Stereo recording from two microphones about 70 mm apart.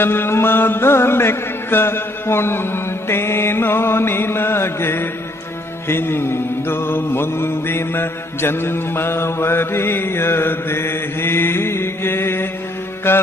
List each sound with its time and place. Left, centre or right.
0.0 s mantra: left